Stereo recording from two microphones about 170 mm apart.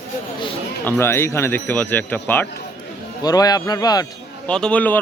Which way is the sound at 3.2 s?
20° left (ahead or behind).